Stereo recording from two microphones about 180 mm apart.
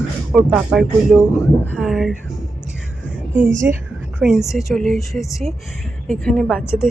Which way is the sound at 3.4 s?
45° right (ahead or behind).